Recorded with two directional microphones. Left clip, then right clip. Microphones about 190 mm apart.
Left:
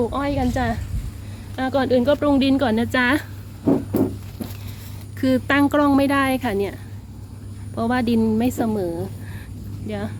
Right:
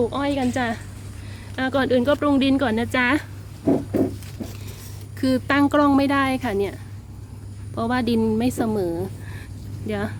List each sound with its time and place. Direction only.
0.0 s speech: 10° right (ahead or behind)
5.2 s speech: 5° right (ahead or behind)
7.8 s speech: 10° right (ahead or behind)